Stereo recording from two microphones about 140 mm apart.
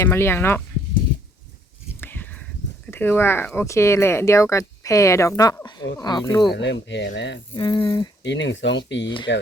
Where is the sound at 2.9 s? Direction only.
15° left (ahead or behind).